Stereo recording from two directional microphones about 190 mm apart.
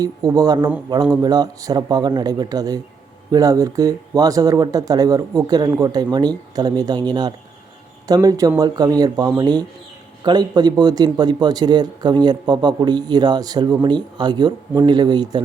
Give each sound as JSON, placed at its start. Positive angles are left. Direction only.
{"t": 0.0, "sound": "a man's voice", "side_deg": -20}